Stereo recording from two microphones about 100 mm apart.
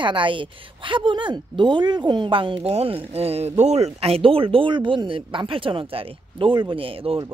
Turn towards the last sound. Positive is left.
turn(degrees=-65)  # may be behind; listen again after turning